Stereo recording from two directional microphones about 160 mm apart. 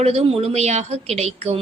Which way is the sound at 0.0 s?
40° right (ahead or behind).